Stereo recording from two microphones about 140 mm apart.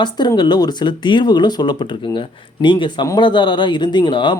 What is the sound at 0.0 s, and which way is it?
Speech, 30° left (ahead or behind).